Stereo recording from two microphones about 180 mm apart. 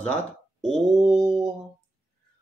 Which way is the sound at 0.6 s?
Centre (ahead or behind).